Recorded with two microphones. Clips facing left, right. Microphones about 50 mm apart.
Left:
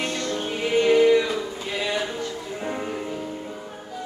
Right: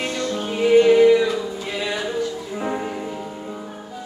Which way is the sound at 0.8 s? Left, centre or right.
Centre.